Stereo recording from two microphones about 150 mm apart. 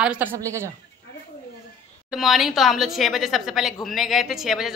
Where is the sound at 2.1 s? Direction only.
Centre (ahead or behind).